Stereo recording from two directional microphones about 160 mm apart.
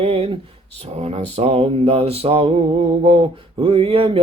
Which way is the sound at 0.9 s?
40° right (ahead or behind).